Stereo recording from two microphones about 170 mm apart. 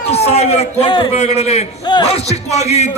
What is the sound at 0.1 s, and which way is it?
A man's voice, 40° left (ahead or behind).